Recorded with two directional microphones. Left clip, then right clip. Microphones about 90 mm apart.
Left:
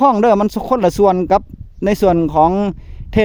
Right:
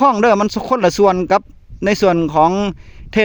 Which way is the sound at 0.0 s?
30° left (ahead or behind).